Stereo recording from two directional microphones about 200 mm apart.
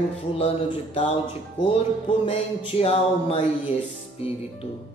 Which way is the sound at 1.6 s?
30° left (ahead or behind).